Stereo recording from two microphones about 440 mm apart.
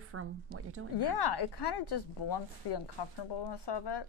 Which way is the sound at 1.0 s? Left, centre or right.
Left.